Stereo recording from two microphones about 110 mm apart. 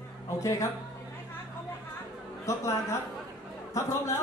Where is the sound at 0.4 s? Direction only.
30° left (ahead or behind).